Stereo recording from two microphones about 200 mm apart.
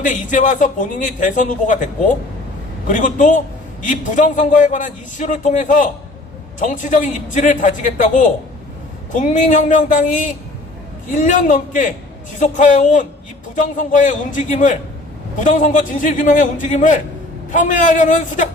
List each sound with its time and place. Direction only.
0.0 s a man's voice: 40° left (ahead or behind)